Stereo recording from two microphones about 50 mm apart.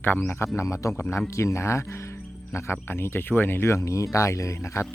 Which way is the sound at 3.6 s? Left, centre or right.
Left.